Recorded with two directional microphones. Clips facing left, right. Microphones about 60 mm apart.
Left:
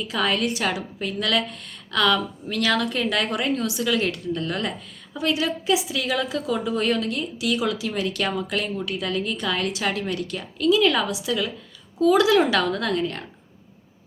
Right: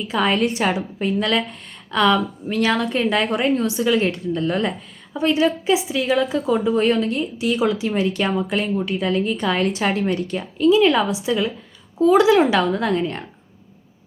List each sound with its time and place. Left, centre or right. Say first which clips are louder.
0.0 s a woman's voice: right 4 dB; right